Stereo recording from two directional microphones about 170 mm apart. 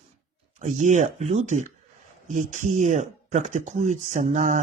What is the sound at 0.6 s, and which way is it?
Speech, 45° right (ahead or behind).